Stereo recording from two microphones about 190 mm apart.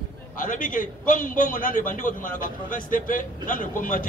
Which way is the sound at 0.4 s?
45° left (ahead or behind).